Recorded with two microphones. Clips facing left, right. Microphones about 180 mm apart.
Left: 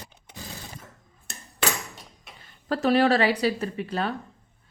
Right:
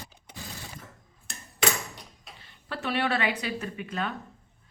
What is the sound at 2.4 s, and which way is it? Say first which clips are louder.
Speech: left 10 dB; 40° left (ahead or behind).